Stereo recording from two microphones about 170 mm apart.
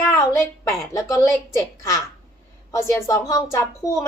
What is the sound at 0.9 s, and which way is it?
Speech, 20° left (ahead or behind).